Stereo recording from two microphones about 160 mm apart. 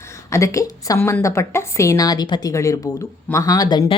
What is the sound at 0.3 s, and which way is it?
A woman's voice, 20° left (ahead or behind).